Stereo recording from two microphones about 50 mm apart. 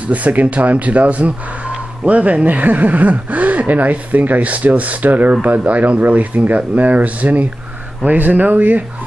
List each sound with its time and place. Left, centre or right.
0.0 s speech: right